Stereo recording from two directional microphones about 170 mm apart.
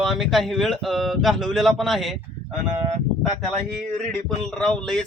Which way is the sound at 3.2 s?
5° left (ahead or behind).